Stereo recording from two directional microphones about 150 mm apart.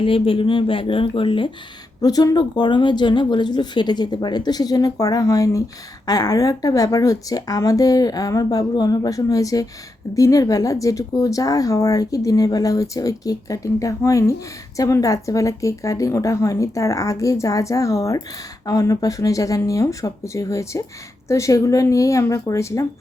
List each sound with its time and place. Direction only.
0.0 s speech: 35° left (ahead or behind)
2.0 s speech: 25° left (ahead or behind)